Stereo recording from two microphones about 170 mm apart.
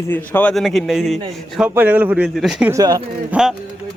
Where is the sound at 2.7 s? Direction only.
20° right (ahead or behind).